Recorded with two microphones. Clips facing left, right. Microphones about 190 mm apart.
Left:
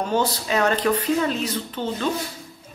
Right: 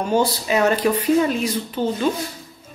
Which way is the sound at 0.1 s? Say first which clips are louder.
Right 5 dB; 10° right (ahead or behind).